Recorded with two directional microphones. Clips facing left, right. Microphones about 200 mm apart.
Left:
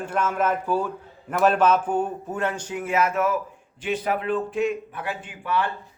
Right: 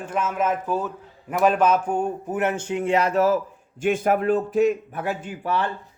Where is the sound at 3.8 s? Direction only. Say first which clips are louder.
Right 5 dB; 50° right (ahead or behind).